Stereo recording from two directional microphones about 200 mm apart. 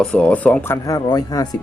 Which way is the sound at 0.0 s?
5° left (ahead or behind).